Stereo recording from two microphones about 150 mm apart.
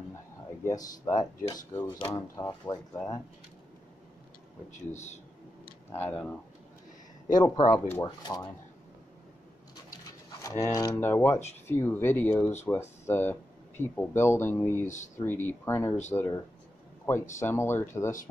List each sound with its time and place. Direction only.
0.7 s speech: 25° left (ahead or behind)
4.7 s speech: 50° left (ahead or behind)
5.9 s speech: 10° left (ahead or behind)
7.3 s speech: 25° left (ahead or behind)
10.4 s speech: 20° left (ahead or behind)